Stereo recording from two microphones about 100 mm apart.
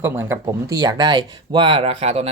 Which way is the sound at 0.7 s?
40° right (ahead or behind).